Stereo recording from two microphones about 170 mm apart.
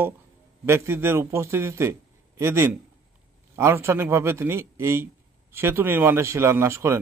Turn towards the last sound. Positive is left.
turn(degrees=-15)  # may be behind; listen again after turning